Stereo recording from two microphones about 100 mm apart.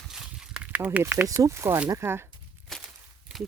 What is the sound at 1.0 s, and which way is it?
Speech, 20° right (ahead or behind).